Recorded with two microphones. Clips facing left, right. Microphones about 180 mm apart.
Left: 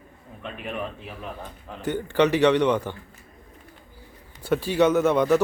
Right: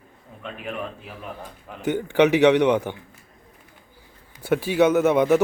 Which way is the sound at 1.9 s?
15° right (ahead or behind).